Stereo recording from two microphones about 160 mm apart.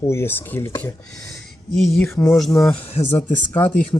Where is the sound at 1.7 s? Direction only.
Centre (ahead or behind).